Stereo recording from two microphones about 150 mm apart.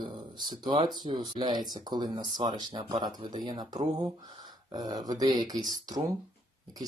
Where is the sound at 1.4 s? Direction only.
30° right (ahead or behind).